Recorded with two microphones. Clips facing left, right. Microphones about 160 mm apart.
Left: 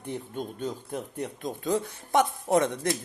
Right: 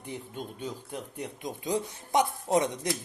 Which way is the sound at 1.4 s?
15° right (ahead or behind).